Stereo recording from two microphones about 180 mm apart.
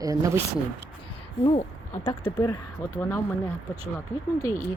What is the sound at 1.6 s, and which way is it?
Speech, 40° left (ahead or behind).